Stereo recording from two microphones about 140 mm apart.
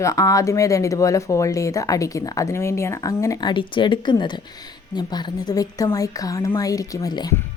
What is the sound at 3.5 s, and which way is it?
Speech, 35° left (ahead or behind).